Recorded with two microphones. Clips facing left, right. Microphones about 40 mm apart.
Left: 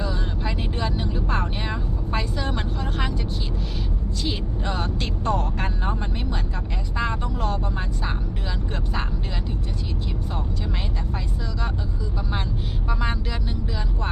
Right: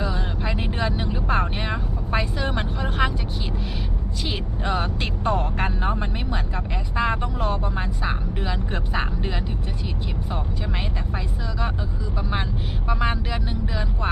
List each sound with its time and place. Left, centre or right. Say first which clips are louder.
0.0 s vehicle: right 1 dB; centre
4.2 s vehicle: even; centre
7.1 s speech: right 2 dB; centre
12.9 s speech: right 3 dB; centre